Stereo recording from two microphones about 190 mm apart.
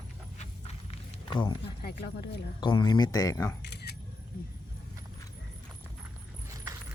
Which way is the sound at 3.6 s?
65° left (ahead or behind).